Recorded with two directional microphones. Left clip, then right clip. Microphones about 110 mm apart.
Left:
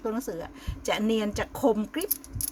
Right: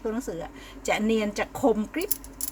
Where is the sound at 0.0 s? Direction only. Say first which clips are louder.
Right 1 dB; 35° left (ahead or behind).